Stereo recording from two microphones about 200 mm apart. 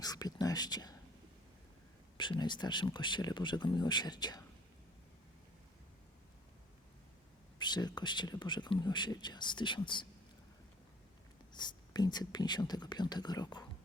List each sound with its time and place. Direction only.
0.0 s speech: 20° left (ahead or behind)
2.1 s speech: 25° left (ahead or behind)
7.6 s speech: 20° left (ahead or behind)
11.5 s speech: 20° left (ahead or behind)